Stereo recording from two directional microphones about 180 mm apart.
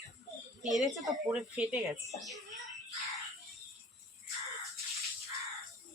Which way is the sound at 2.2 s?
Centre (ahead or behind).